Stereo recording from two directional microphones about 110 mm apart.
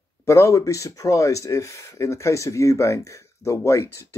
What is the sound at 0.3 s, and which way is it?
Speech, 30° left (ahead or behind).